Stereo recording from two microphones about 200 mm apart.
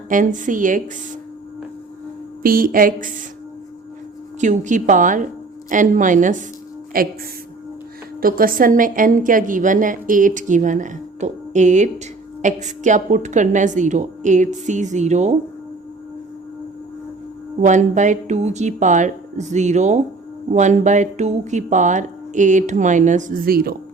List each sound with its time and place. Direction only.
0.1 s a woman's voice: 40° right (ahead or behind)
2.4 s speech: 45° right (ahead or behind)
4.4 s a woman's voice: 40° right (ahead or behind)
8.2 s a woman's voice: 45° right (ahead or behind)
17.6 s a woman's voice: 40° right (ahead or behind)